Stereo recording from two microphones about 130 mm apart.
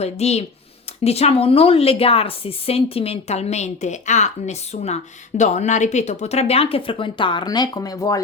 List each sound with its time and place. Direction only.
0.0 s a woman's voice: 55° left (ahead or behind); by 8.2 s 25° left (ahead or behind)